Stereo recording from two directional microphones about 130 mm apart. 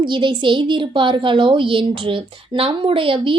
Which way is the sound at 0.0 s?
40° right (ahead or behind).